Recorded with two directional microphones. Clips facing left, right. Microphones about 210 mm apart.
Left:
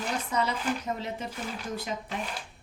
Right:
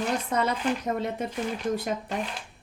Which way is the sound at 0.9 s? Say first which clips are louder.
Right 5 dB; 55° right (ahead or behind).